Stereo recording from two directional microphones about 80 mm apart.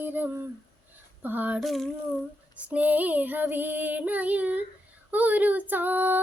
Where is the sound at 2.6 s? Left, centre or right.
Centre.